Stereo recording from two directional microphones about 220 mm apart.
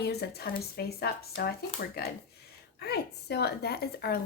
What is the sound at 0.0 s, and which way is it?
A woman's voice, 45° left (ahead or behind).